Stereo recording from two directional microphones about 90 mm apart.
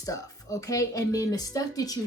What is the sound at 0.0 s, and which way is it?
A woman's voice, 40° left (ahead or behind).